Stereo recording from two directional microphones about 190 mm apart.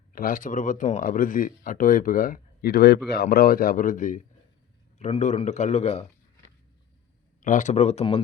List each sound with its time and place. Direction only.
0.1 s a man's voice: 45° left (ahead or behind)
7.4 s a man's voice: 40° left (ahead or behind)